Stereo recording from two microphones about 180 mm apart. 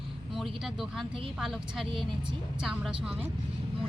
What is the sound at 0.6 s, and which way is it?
A woman's voice, centre (ahead or behind).